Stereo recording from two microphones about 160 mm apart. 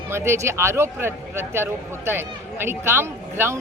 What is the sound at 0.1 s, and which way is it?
Speech, 15° right (ahead or behind).